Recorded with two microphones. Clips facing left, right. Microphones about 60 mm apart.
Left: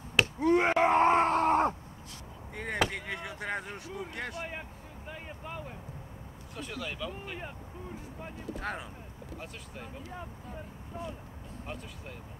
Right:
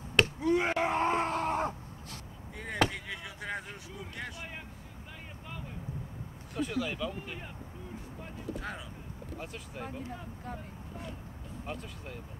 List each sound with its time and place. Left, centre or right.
0.4 s a sound: left
0.8 s groan: left
2.5 s chop: left
2.9 s a sound: left
6.5 s speech: centre
8.6 s speech: left
9.4 s speech: centre
11.6 s speech: centre